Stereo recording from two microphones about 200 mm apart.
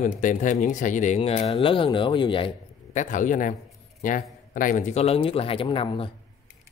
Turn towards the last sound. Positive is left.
turn(degrees=25)  # may be behind; listen again after turning